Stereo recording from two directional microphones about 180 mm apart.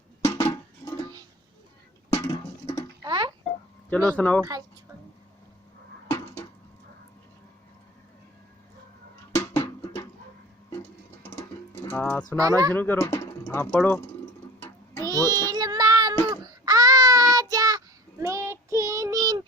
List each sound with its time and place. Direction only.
0.3 s a sound: 15° left (ahead or behind)
2.1 s a sound: 15° left (ahead or behind)
3.0 s tick-tock: 25° right (ahead or behind)
3.8 s speech: 5° left (ahead or behind)
6.1 s a sound: 15° left (ahead or behind)
9.6 s music: 15° left (ahead or behind)
11.9 s speech: 10° left (ahead or behind)
12.4 s speech: 20° right (ahead or behind)
12.7 s speech: 10° left (ahead or behind)
15.0 s child singing: 20° right (ahead or behind)